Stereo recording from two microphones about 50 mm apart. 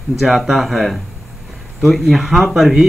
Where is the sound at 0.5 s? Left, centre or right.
Centre.